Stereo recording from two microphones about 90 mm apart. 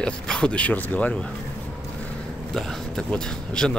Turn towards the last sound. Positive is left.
turn(degrees=10)  # may be behind; listen again after turning